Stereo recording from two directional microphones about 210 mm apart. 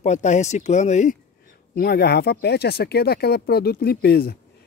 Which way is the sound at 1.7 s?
50° left (ahead or behind).